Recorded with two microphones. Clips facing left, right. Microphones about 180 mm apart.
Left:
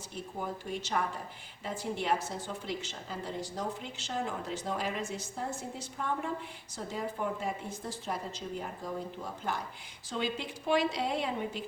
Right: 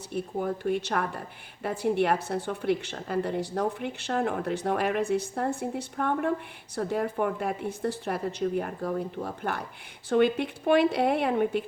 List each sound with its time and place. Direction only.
0.1 s speech: 60° right (ahead or behind)